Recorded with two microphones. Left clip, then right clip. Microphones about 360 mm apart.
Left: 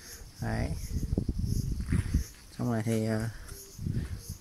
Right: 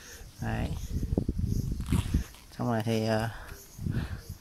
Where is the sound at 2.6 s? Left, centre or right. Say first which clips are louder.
Right 2 dB; centre.